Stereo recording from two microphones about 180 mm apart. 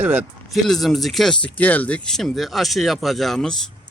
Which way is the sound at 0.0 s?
10° right (ahead or behind).